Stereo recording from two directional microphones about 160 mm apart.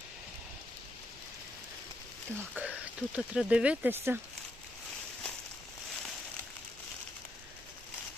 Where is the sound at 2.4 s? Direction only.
10° right (ahead or behind).